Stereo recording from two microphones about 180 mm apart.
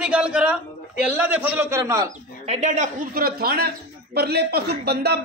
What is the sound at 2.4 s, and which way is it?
A man's voice, 40° right (ahead or behind).